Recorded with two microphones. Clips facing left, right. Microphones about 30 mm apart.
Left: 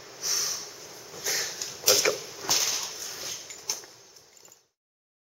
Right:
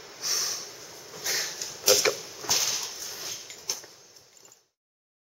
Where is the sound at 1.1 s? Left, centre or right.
Centre.